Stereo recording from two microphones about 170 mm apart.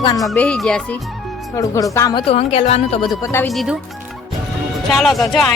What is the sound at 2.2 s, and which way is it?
Speech, 35° left (ahead or behind).